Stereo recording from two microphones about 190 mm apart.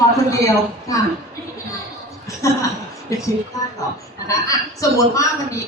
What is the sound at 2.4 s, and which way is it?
A man's voice, 15° left (ahead or behind).